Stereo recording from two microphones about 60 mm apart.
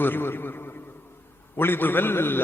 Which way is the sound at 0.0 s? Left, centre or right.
Left.